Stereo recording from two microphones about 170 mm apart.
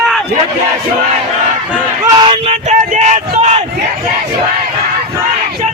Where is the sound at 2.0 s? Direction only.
25° right (ahead or behind).